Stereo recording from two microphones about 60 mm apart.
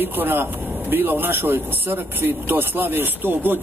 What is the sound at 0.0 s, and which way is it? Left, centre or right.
A man's voice, right.